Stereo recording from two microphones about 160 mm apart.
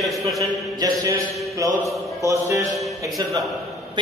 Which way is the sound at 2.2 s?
20° right (ahead or behind).